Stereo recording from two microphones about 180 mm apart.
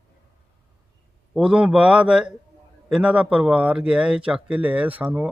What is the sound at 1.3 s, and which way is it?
Speech, 5° right (ahead or behind).